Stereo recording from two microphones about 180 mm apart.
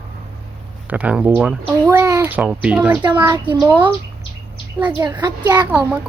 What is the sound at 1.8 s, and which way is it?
A child's voice, 20° right (ahead or behind).